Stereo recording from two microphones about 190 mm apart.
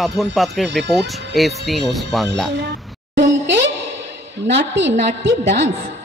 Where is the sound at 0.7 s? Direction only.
65° right (ahead or behind).